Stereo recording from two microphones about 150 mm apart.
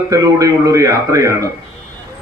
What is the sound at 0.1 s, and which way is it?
Speech, 20° right (ahead or behind).